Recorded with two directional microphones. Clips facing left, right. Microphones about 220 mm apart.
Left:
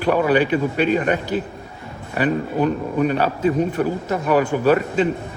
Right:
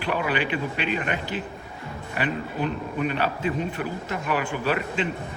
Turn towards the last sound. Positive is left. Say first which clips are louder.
# left 9 dB
turn(degrees=40)  # may be behind; listen again after turning